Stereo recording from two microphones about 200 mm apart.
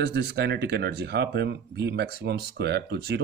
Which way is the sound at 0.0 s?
55° right (ahead or behind).